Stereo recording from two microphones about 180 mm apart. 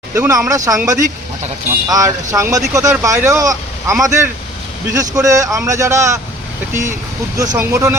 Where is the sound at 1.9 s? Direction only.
20° right (ahead or behind).